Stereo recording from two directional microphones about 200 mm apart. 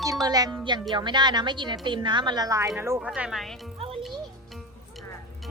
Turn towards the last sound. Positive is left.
turn(degrees=-30)  # may be behind; listen again after turning